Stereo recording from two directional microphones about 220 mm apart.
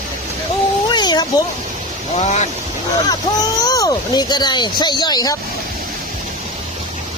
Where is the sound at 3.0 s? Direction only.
15° left (ahead or behind).